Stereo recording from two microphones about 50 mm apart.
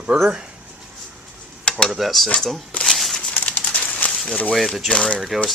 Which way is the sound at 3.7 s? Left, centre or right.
Left.